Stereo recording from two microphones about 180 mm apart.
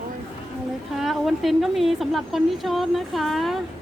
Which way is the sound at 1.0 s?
Centre (ahead or behind).